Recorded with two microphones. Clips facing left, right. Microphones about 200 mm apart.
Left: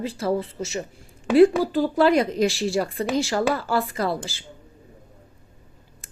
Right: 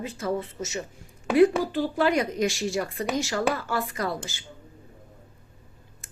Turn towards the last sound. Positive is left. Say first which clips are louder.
# left 4 dB
turn(degrees=30)  # may be behind; listen again after turning